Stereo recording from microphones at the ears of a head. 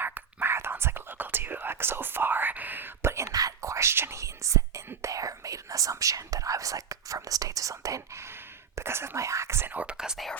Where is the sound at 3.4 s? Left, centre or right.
Right.